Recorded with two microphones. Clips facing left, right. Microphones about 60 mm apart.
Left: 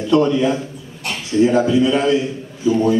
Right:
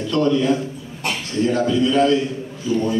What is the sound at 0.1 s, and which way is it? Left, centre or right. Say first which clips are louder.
A man's voice: left 3 dB; centre.